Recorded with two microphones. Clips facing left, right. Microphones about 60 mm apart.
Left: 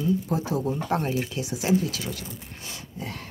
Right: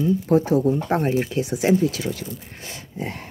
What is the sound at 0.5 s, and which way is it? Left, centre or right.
Speech, right.